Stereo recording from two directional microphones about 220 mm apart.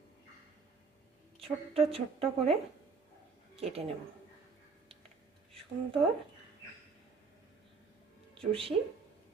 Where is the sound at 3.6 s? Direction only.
25° right (ahead or behind).